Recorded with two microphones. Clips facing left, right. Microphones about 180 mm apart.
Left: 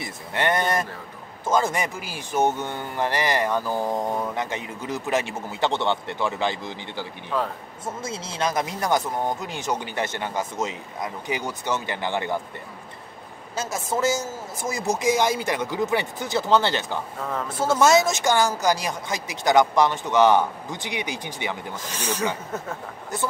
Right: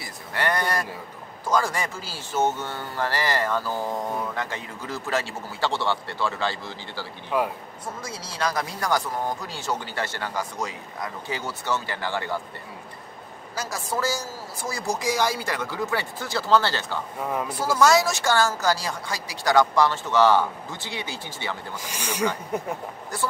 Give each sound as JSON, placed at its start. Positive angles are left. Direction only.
{"t": 0.0, "sound": "a sound", "side_deg": 20}
{"t": 1.4, "sound": "speech", "side_deg": 20}
{"t": 7.2, "sound": "speech", "side_deg": -10}
{"t": 7.8, "sound": "speech", "side_deg": 25}
{"t": 13.6, "sound": "speech", "side_deg": 20}
{"t": 17.2, "sound": "speech", "side_deg": -10}
{"t": 17.5, "sound": "speech", "side_deg": 25}
{"t": 21.7, "sound": "speech", "side_deg": -10}